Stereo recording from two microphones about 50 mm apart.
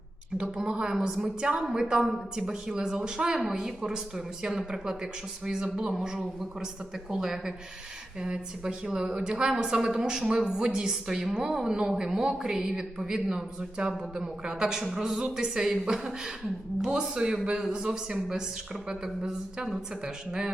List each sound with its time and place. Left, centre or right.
0.3 s a woman's voice: centre